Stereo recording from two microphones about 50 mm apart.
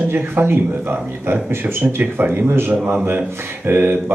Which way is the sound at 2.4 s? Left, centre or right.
Right.